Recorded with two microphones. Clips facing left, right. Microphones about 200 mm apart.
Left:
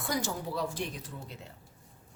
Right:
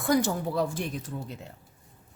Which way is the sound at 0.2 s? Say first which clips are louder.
Right 7 dB; 50° right (ahead or behind).